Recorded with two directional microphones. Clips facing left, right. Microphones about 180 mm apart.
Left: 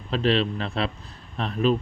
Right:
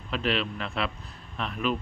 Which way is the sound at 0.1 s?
35° left (ahead or behind).